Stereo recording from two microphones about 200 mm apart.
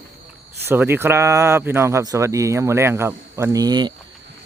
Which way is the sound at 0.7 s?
10° right (ahead or behind).